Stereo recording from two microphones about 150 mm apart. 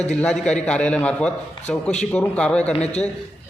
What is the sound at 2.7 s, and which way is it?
Speech, 45° left (ahead or behind).